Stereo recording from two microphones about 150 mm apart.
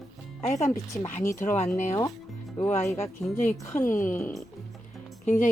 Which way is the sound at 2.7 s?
20° left (ahead or behind).